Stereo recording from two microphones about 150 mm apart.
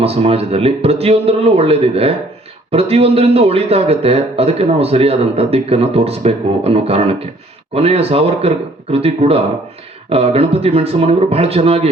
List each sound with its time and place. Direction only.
0.0 s a man's voice: 40° right (ahead or behind)